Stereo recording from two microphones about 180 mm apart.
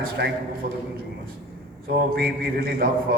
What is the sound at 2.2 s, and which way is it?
Speech, 55° right (ahead or behind).